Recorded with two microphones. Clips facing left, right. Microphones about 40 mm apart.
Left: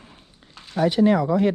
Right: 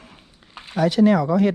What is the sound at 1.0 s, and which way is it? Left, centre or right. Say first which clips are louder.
Speech: right 2 dB; right.